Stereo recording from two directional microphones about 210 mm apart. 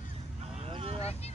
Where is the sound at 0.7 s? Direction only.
30° right (ahead or behind).